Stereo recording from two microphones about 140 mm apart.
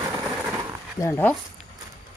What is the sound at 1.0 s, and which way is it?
Speech, 15° left (ahead or behind).